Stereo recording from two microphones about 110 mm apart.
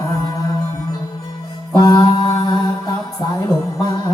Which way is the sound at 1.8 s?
40° left (ahead or behind).